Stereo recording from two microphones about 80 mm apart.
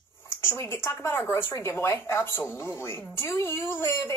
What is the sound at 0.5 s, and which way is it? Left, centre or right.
Speech, left.